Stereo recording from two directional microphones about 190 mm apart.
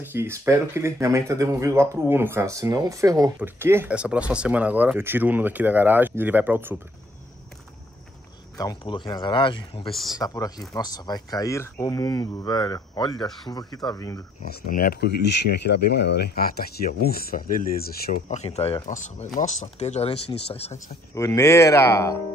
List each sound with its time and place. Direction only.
0.0 s speech: 10° right (ahead or behind)
8.5 s speech: 25° left (ahead or behind)
9.8 s speech: centre (ahead or behind)
10.1 s speech: 20° left (ahead or behind)
14.5 s speech: 50° left (ahead or behind)
18.3 s speech: 35° left (ahead or behind)
21.1 s speech: 15° left (ahead or behind)